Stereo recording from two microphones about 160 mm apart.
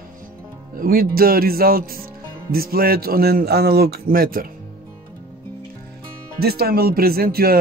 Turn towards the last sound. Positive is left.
turn(degrees=-70)  # may be behind; listen again after turning